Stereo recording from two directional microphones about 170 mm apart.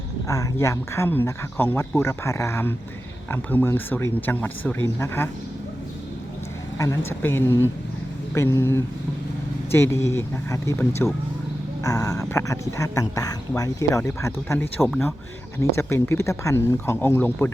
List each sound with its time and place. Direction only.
0.3 s speech: 15° left (ahead or behind)
6.7 s speech: 15° left (ahead or behind)